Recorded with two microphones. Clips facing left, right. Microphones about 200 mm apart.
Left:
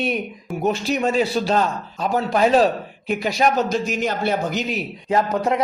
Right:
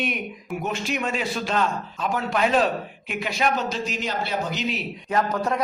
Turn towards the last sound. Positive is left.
turn(degrees=20)  # may be behind; listen again after turning